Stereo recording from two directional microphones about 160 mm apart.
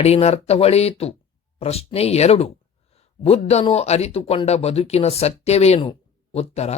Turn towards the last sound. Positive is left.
turn(degrees=40)  # may be behind; listen again after turning